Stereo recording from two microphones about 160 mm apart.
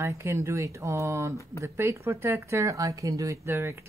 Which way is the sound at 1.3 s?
20° left (ahead or behind).